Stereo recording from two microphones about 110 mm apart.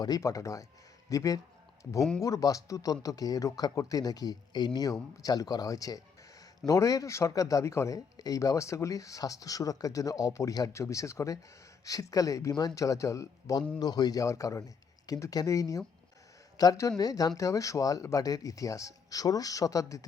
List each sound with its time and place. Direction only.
0.0 s speech: 35° left (ahead or behind)